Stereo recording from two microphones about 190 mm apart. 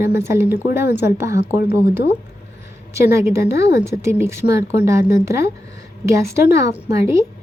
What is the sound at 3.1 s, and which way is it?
A woman's voice, 15° right (ahead or behind).